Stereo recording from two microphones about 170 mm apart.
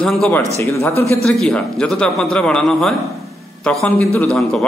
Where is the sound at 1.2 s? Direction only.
5° left (ahead or behind).